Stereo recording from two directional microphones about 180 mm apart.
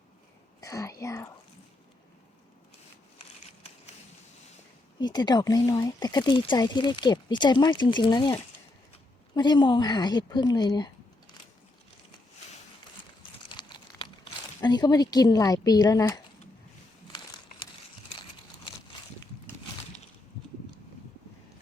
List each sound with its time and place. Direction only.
0.6 s whispering: 20° left (ahead or behind)
4.9 s speech: 25° left (ahead or behind)
13.5 s crumpling: 25° left (ahead or behind)
14.6 s speech: 20° left (ahead or behind)